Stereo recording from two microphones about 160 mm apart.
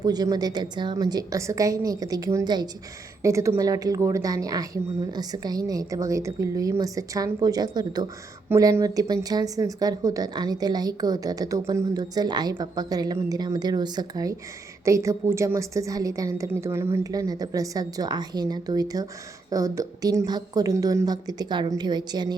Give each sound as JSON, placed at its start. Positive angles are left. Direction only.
{"t": 0.0, "sound": "a woman's voice", "side_deg": -25}